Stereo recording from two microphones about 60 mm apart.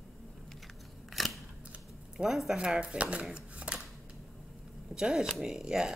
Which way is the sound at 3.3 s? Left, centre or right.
Centre.